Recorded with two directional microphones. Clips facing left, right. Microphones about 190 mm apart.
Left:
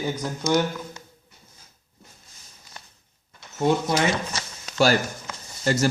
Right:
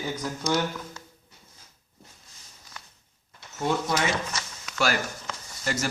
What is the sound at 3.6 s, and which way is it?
Speech, 20° left (ahead or behind).